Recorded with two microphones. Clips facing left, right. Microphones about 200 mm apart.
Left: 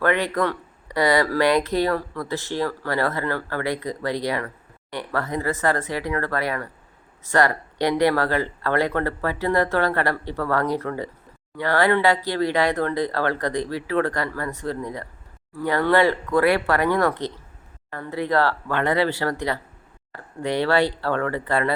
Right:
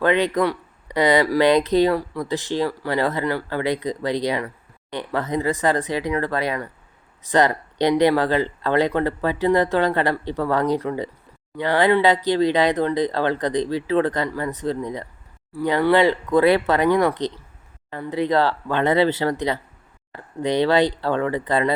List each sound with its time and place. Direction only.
0.0 s speech: 20° right (ahead or behind)